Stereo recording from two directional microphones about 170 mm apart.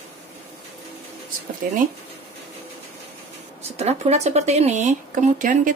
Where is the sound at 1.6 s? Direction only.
60° right (ahead or behind).